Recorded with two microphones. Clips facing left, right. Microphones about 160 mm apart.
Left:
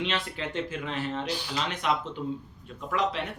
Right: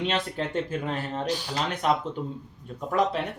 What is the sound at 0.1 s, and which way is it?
Speech, 45° right (ahead or behind).